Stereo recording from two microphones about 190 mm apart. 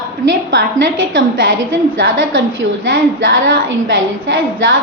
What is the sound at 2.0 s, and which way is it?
A woman's voice, 80° right.